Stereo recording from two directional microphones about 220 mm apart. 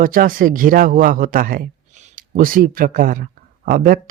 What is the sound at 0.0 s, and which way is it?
Speech, 40° right (ahead or behind).